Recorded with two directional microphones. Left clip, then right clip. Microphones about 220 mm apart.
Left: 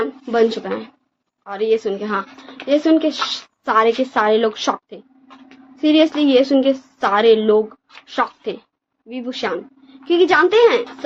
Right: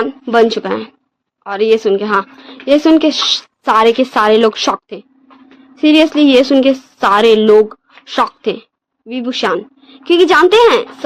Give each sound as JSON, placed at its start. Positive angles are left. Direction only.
{"t": 0.0, "sound": "a woman's voice", "side_deg": -50}